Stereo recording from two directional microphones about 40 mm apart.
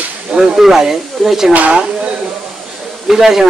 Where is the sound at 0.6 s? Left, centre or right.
Centre.